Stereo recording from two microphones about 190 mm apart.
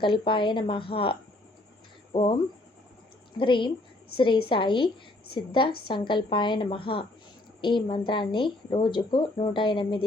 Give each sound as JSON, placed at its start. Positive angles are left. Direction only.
{"t": 0.0, "sound": "speech", "side_deg": 25}
{"t": 2.1, "sound": "speech", "side_deg": 25}